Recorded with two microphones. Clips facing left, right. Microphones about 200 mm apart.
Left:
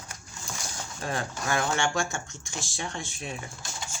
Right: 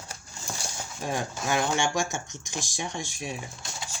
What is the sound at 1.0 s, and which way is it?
Speech, 15° right (ahead or behind).